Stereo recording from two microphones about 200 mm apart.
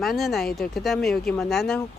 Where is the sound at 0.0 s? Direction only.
Centre (ahead or behind).